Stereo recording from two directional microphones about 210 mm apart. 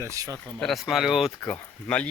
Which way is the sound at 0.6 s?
Centre (ahead or behind).